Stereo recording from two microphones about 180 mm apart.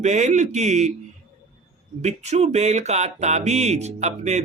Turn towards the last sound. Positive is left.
turn(degrees=-40)  # may be behind; listen again after turning